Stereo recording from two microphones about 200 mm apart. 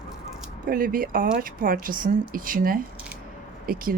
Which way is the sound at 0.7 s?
45° right (ahead or behind).